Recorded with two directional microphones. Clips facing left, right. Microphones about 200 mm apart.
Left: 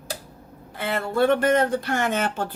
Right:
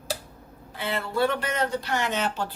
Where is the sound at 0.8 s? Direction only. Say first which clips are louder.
Left 3 dB; 50° left (ahead or behind).